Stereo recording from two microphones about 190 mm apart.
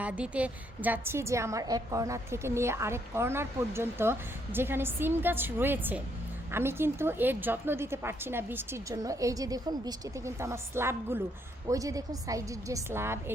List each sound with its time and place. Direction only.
0.0 s a woman's voice: 5° right (ahead or behind)